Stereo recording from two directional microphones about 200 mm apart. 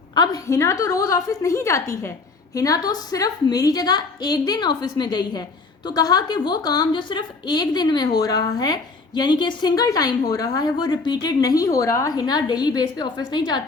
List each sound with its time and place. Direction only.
0.1 s a woman's voice: 15° left (ahead or behind)